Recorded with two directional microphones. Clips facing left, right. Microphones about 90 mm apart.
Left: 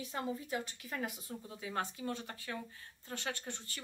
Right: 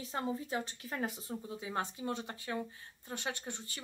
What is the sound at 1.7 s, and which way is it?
Speech, 20° right (ahead or behind).